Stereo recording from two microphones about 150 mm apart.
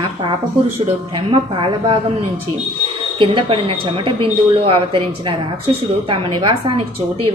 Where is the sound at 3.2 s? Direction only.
30° right (ahead or behind).